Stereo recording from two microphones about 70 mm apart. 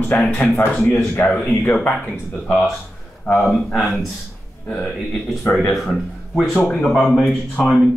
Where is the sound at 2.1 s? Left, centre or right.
Centre.